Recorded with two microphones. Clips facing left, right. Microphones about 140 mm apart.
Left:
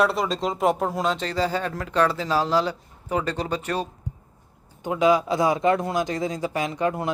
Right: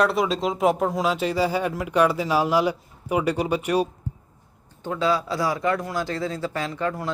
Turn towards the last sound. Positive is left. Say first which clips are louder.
# left 2 dB
turn(degrees=20)  # may be behind; listen again after turning